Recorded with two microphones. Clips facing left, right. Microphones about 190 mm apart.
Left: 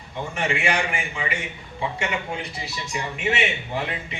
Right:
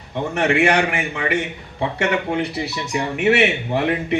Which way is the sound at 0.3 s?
65° right (ahead or behind).